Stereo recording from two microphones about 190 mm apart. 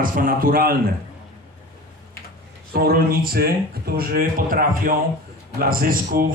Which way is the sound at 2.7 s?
50° right (ahead or behind).